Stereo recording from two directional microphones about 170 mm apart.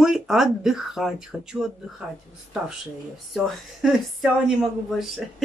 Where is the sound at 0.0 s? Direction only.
Centre (ahead or behind).